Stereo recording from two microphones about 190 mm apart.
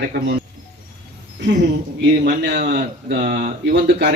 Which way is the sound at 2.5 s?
45° right (ahead or behind).